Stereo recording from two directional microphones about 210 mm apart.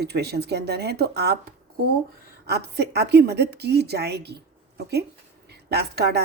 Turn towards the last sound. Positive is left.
turn(degrees=-50)  # may be behind; listen again after turning